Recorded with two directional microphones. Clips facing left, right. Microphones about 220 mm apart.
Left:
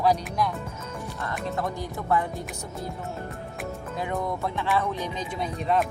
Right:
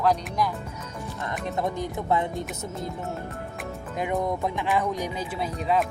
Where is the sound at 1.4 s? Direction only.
20° right (ahead or behind).